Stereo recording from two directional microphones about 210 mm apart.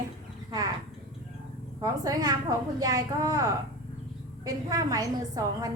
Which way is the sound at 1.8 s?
15° right (ahead or behind).